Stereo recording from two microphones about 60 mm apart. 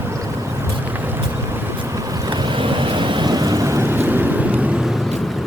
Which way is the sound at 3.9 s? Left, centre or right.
Right.